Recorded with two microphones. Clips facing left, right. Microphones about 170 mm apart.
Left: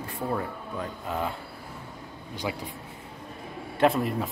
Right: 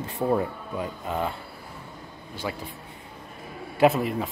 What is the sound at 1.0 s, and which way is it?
Speech, centre (ahead or behind).